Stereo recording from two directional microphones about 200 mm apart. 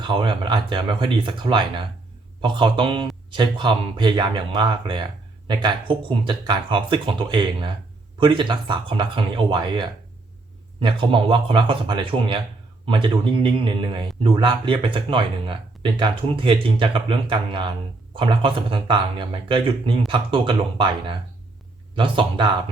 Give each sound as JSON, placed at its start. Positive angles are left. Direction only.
{"t": 0.0, "sound": "speech", "side_deg": -25}